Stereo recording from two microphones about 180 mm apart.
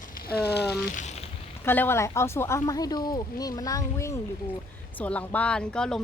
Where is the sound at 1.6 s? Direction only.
10° left (ahead or behind).